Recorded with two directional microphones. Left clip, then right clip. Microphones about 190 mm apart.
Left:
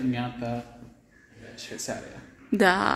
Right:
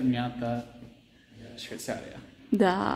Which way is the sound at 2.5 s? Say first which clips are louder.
Left 4 dB; 10° right (ahead or behind).